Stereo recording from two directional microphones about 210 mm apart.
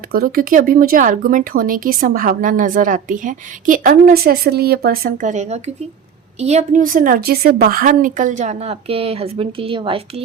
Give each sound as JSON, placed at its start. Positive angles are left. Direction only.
{"t": 0.1, "sound": "speech", "side_deg": -45}